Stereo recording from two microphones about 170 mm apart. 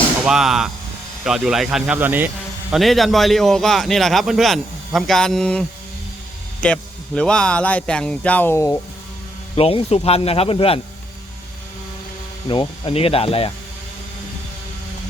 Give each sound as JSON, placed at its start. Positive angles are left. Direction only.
{"t": 0.3, "sound": "a man's voice", "side_deg": -5}
{"t": 2.7, "sound": "a man's voice", "side_deg": 0}
{"t": 9.6, "sound": "speech", "side_deg": 35}
{"t": 12.5, "sound": "speech", "side_deg": 30}